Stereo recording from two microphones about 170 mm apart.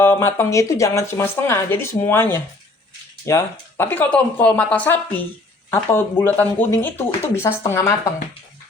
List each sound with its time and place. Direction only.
0.0 s speech: 15° left (ahead or behind)